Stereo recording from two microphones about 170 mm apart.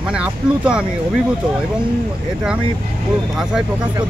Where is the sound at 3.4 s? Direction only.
5° right (ahead or behind).